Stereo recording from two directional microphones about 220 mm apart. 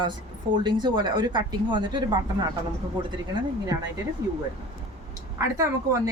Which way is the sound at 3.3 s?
20° right (ahead or behind).